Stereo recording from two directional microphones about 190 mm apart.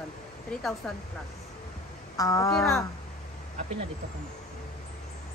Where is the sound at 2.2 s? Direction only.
15° left (ahead or behind).